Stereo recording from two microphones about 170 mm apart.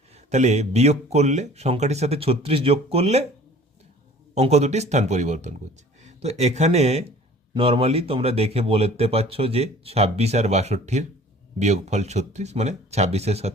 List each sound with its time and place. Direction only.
0.1 s speech: 40° right (ahead or behind)
4.4 s speech: 40° right (ahead or behind)